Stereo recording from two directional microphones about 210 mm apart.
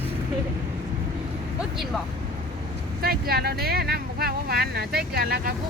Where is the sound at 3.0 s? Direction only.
45° right (ahead or behind).